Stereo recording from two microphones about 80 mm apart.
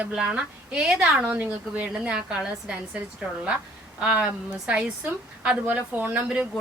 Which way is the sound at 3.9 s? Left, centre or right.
Centre.